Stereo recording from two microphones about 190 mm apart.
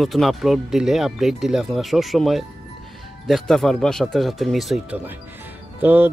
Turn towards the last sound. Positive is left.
turn(degrees=-10)  # may be behind; listen again after turning